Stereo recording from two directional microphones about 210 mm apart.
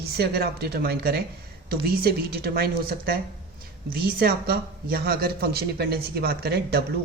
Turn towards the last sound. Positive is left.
turn(degrees=-50)  # may be behind; listen again after turning